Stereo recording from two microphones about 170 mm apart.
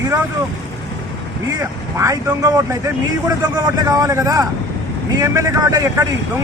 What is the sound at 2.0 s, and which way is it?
A man's voice, 20° right (ahead or behind).